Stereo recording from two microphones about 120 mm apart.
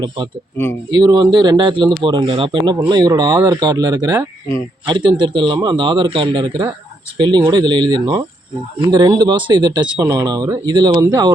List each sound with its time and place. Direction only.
0.5 s speech: 20° left (ahead or behind)
0.9 s speech: 35° right (ahead or behind)